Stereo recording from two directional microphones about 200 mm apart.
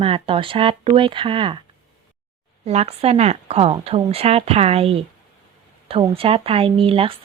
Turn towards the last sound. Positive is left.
turn(degrees=-30)  # may be behind; listen again after turning